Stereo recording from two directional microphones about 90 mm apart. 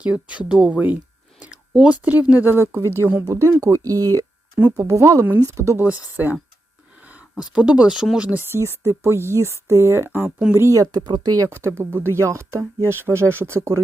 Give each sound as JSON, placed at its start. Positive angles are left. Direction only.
{"t": 0.0, "sound": "speech", "side_deg": -15}
{"t": 4.5, "sound": "speech", "side_deg": -20}
{"t": 4.9, "sound": "speech", "side_deg": -35}
{"t": 5.7, "sound": "speech", "side_deg": -20}
{"t": 8.3, "sound": "speech", "side_deg": -25}
{"t": 10.2, "sound": "speech", "side_deg": -10}
{"t": 10.5, "sound": "speech", "side_deg": -30}
{"t": 10.9, "sound": "speech", "side_deg": -55}
{"t": 11.3, "sound": "speech", "side_deg": -30}